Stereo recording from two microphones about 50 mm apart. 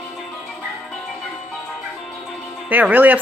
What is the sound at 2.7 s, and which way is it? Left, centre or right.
Speech, right.